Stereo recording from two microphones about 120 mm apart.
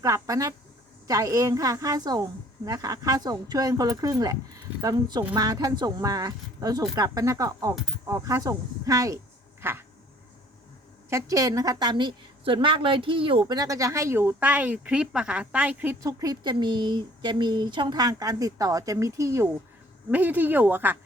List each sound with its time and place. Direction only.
0.0 s a woman's voice: 25° right (ahead or behind)
9.6 s a sound: 20° right (ahead or behind)
11.1 s speech: 30° right (ahead or behind); by 13.6 s 45° right (ahead or behind)
13.6 s speech: 30° right (ahead or behind)
16.0 s speech: 35° right (ahead or behind)
20.1 s speech: 15° right (ahead or behind)